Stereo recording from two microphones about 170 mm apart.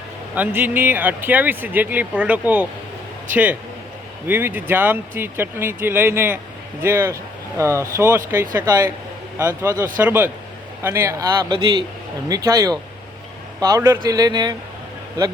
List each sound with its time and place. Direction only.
0.3 s a man's voice: 10° right (ahead or behind)